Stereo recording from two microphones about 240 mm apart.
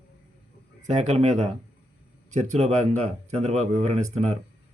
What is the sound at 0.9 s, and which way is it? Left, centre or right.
Speech, right.